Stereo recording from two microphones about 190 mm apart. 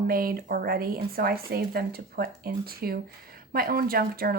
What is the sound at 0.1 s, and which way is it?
Speech, 50° right (ahead or behind).